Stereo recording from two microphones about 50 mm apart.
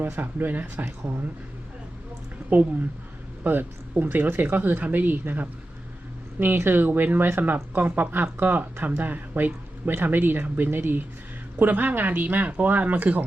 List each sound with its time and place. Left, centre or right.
0.0 s speech: right
3.4 s speech: right